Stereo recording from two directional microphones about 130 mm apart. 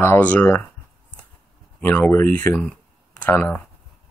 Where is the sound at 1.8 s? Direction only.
15° left (ahead or behind).